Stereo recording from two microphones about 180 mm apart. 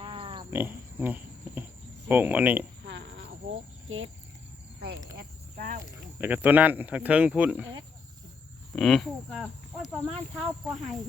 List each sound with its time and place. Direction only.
0.0 s pig: 30° right (ahead or behind)
0.5 s speech: 10° right (ahead or behind)
2.8 s a sound: 85° right
3.8 s speech: 90° right
5.1 s speech: 50° right (ahead or behind)
5.8 s speech: 10° right (ahead or behind)
8.7 s speech: centre (ahead or behind)